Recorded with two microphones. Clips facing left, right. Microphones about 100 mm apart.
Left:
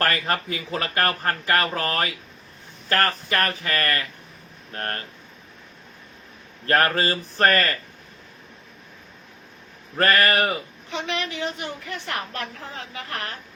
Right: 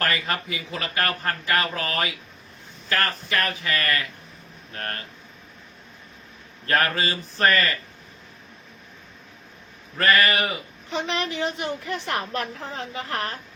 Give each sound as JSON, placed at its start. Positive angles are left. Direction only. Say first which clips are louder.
{"t": 0.0, "sound": "a man's voice", "louder": "left 2 dB", "side_deg": 45}
{"t": 6.7, "sound": "a man's voice", "louder": "left 3 dB", "side_deg": 40}
{"t": 10.0, "sound": "a man's voice", "louder": "left 1 dB", "side_deg": 45}
{"t": 10.8, "sound": "a woman's voice", "louder": "right 2 dB", "side_deg": -30}